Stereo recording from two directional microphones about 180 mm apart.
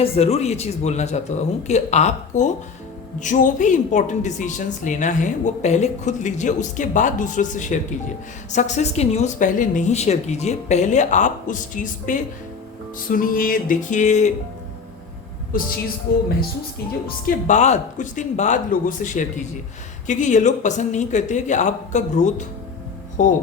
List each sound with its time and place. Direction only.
0.0 s a woman's voice: 35° left (ahead or behind)
15.5 s a woman's voice: 50° left (ahead or behind)
17.2 s a woman's voice: 45° left (ahead or behind)